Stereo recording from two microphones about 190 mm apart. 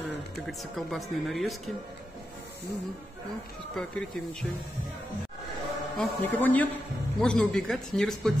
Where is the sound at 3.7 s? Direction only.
Centre (ahead or behind).